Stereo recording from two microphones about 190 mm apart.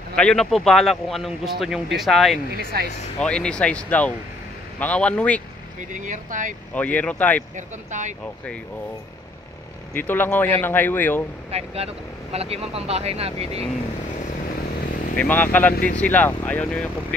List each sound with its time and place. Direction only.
0.1 s a man's voice: 5° left (ahead or behind)
2.7 s speech: 55° right (ahead or behind)
3.2 s a man's voice: 5° left (ahead or behind)
5.8 s speech: 40° right (ahead or behind)
6.7 s a man's voice: 10° left (ahead or behind)
7.5 s speech: 40° right (ahead or behind)
9.9 s a man's voice: 10° left (ahead or behind)
11.5 s speech: 30° right (ahead or behind)
15.1 s a man's voice: 10° left (ahead or behind)